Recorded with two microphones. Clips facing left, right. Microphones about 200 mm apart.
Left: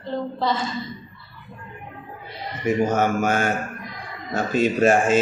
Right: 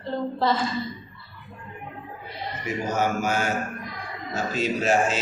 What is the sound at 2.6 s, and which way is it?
Speech, 55° left (ahead or behind).